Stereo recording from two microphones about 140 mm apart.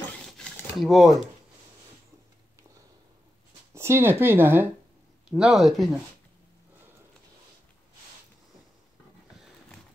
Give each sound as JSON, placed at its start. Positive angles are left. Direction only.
{"t": 0.3, "sound": "shuffling cards", "side_deg": 0}
{"t": 3.7, "sound": "speech", "side_deg": -20}
{"t": 5.3, "sound": "speech", "side_deg": -5}